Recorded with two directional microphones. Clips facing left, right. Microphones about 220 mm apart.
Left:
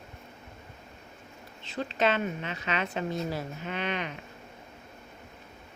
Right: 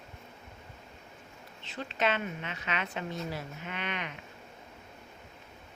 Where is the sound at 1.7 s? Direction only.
35° left (ahead or behind).